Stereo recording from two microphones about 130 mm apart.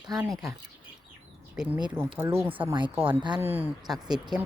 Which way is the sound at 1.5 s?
10° right (ahead or behind).